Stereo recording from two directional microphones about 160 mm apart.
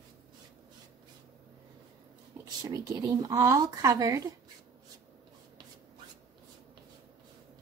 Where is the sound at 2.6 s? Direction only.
25° right (ahead or behind).